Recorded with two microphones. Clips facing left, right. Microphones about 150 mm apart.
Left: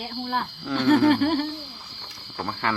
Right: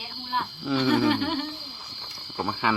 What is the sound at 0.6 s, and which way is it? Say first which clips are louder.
Speech: right 3 dB; 5° right (ahead or behind).